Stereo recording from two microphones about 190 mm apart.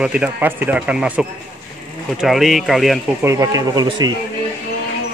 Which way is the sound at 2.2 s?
Centre (ahead or behind).